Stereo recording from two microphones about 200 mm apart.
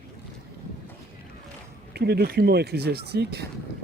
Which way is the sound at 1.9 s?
55° right (ahead or behind).